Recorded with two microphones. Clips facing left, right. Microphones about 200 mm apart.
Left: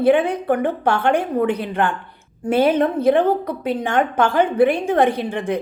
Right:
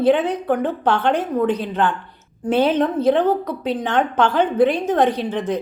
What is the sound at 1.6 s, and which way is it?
Speech, 55° left (ahead or behind).